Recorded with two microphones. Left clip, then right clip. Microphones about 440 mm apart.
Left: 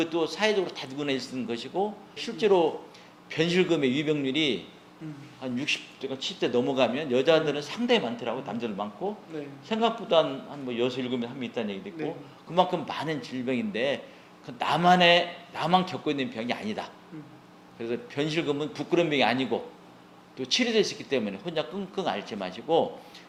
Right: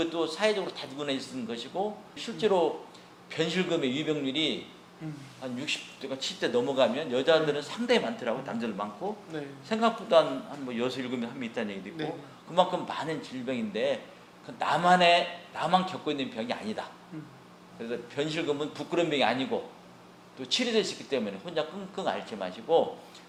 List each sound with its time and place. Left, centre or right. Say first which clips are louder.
0.0 s speech: left 1 dB; left